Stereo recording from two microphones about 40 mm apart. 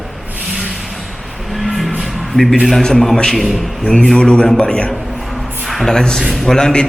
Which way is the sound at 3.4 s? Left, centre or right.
Centre.